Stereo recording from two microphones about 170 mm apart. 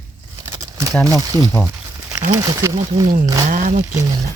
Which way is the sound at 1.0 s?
20° right (ahead or behind).